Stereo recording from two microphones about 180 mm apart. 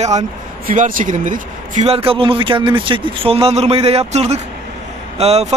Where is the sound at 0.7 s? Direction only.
50° right (ahead or behind).